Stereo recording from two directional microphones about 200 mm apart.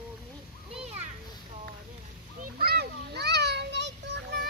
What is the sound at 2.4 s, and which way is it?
Children playing, 50° right (ahead or behind).